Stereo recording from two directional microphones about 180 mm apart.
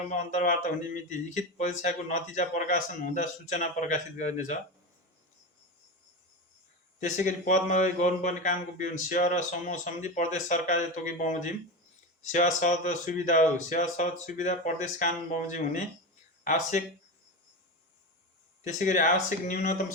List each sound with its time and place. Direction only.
0.1 s speech: 45° left (ahead or behind)
7.0 s speech: 45° left (ahead or behind)
18.6 s speech: 45° left (ahead or behind)